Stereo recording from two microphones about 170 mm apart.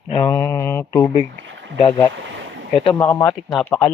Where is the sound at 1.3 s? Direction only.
90° right.